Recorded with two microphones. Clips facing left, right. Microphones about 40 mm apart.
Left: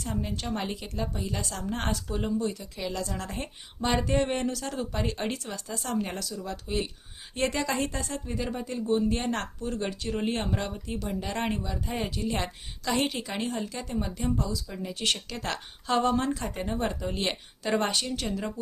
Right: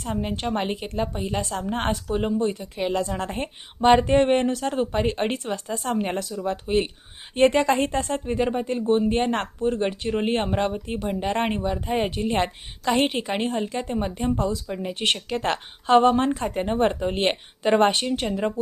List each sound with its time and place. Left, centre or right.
0.0 s speech: right